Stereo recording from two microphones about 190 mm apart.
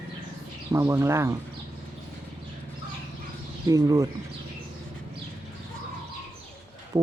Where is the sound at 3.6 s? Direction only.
20° right (ahead or behind).